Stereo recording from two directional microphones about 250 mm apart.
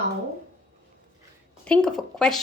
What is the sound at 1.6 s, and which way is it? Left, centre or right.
Speech, centre.